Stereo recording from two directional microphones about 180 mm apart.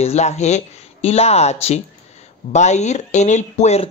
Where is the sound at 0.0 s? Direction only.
35° left (ahead or behind).